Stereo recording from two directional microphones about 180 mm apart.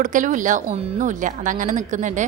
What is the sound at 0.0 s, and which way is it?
A woman's voice, 45° right (ahead or behind).